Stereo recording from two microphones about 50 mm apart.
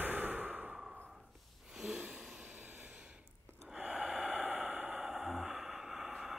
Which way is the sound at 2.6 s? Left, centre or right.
Right.